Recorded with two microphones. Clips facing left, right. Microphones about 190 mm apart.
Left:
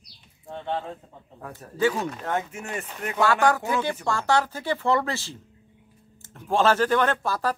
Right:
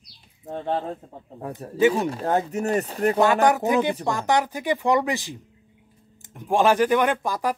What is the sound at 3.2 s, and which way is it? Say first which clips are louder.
Speech: right 1 dB; 20° right (ahead or behind).